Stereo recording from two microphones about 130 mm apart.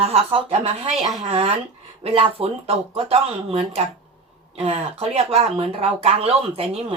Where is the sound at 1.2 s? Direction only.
50° right (ahead or behind).